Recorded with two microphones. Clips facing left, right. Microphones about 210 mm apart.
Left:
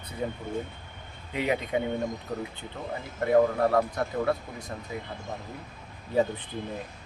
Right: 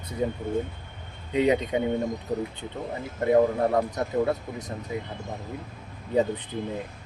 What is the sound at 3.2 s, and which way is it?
Speech, 20° right (ahead or behind).